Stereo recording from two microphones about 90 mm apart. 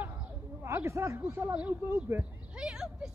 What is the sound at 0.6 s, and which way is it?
Speech, 30° right (ahead or behind).